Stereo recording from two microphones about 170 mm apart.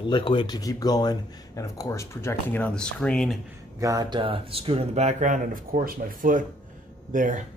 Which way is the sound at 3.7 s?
20° right (ahead or behind).